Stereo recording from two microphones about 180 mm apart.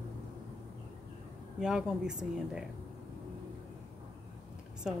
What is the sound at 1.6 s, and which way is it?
A woman's voice, 5° right (ahead or behind).